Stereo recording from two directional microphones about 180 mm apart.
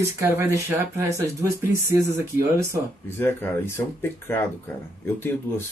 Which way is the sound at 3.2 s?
10° left (ahead or behind).